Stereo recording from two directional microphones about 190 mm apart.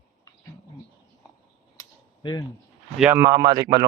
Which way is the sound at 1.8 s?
20° left (ahead or behind).